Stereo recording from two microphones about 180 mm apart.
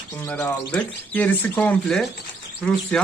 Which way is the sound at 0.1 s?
10° left (ahead or behind).